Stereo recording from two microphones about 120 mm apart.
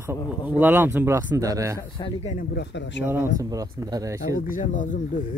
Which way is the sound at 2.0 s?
35° left (ahead or behind).